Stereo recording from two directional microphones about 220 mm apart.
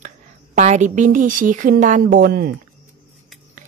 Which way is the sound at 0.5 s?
35° right (ahead or behind).